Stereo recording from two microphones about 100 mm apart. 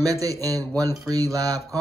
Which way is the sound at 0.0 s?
35° right (ahead or behind).